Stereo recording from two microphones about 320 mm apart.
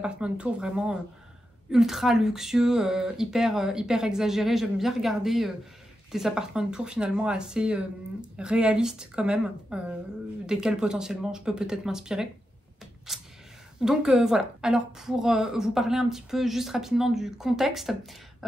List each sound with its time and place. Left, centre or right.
0.0 s a woman's voice: centre